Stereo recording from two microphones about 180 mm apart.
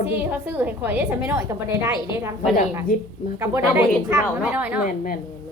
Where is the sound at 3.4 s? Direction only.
15° right (ahead or behind).